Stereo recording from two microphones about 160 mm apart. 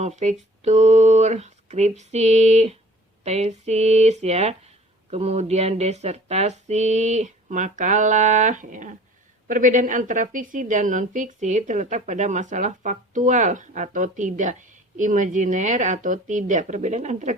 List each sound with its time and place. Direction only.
0.0 s a woman's voice: 45° right (ahead or behind)